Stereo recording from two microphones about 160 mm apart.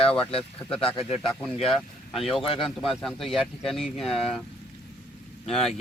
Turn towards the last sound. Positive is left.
turn(degrees=5)  # may be behind; listen again after turning